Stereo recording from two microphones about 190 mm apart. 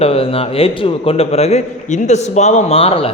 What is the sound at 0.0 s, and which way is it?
A man's voice, 30° left (ahead or behind).